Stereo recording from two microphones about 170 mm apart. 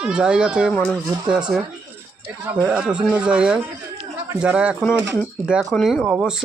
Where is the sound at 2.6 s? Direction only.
5° right (ahead or behind).